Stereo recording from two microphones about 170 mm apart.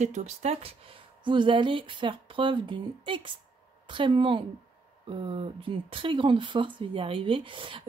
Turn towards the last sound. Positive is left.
turn(degrees=-30)  # may be behind; listen again after turning